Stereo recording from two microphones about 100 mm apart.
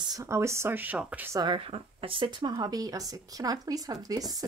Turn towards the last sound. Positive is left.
turn(degrees=-40)  # may be behind; listen again after turning